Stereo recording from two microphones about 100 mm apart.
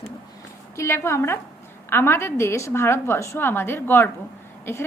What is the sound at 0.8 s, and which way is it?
A woman's voice, 25° left (ahead or behind).